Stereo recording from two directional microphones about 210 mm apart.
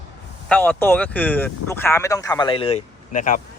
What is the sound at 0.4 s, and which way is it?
Speech, 5° left (ahead or behind).